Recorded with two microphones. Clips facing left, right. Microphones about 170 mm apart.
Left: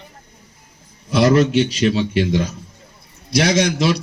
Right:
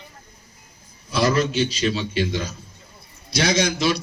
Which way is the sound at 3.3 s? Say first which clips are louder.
Left 4 dB; 70° left (ahead or behind).